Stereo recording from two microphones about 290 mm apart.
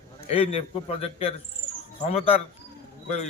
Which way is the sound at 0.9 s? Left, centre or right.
Left.